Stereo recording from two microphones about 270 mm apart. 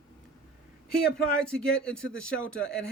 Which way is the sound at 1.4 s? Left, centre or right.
Centre.